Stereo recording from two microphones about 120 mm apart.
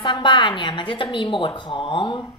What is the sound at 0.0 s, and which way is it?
A woman's voice, 40° left (ahead or behind).